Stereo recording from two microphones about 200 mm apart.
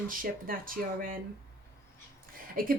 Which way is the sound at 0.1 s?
45° right (ahead or behind).